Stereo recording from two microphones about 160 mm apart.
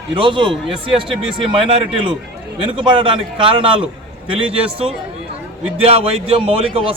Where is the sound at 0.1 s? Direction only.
30° right (ahead or behind).